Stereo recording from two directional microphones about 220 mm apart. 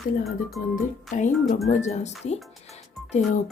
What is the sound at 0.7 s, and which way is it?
Music, 35° left (ahead or behind).